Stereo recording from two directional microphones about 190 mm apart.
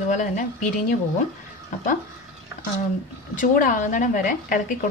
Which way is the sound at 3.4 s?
45° left (ahead or behind).